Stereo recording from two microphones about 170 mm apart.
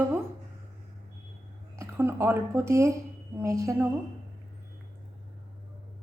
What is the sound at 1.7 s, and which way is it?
A woman's voice, 15° right (ahead or behind).